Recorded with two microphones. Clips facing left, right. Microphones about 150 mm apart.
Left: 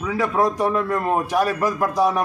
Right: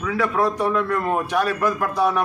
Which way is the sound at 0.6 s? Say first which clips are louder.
Even; 10° left (ahead or behind).